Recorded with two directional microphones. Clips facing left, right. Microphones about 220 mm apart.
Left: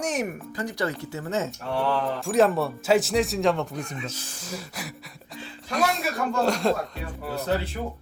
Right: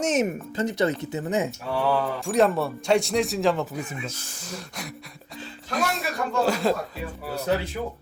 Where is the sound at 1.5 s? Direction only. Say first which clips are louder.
Right 1 dB; centre (ahead or behind).